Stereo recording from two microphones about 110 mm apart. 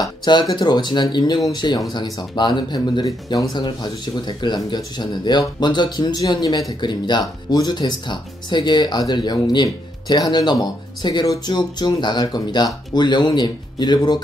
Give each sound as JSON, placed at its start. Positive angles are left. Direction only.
{"t": 0.0, "sound": "speech", "side_deg": 40}